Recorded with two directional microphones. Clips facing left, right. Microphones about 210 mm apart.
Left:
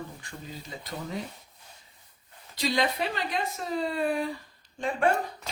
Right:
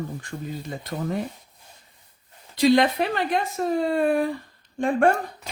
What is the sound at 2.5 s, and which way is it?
Speech, 55° right (ahead or behind).